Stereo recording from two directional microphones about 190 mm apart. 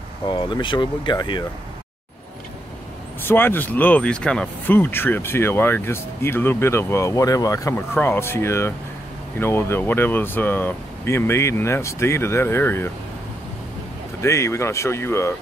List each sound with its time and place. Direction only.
0.3 s speech: 25° left (ahead or behind)
3.3 s speech: 10° left (ahead or behind)
14.2 s speech: 15° left (ahead or behind)